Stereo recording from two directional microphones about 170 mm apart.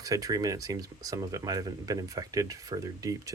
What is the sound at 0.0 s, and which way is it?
Speech, 20° right (ahead or behind).